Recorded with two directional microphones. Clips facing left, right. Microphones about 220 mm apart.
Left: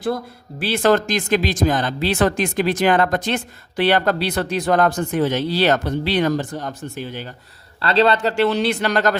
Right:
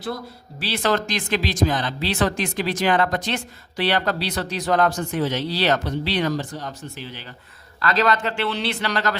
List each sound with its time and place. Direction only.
0.6 s speech: 50° left (ahead or behind)
7.8 s speech: 30° left (ahead or behind); by 9.1 s 50° left (ahead or behind)